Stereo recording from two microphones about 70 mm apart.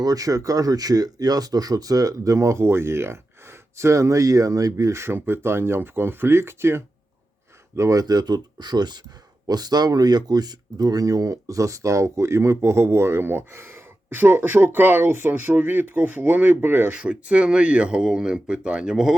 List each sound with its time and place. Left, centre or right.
0.0 s speech: right
7.8 s speech: right
9.5 s speech: right
16.9 s speech: centre